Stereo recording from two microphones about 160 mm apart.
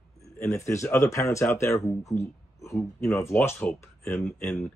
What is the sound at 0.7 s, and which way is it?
Speech, 15° left (ahead or behind).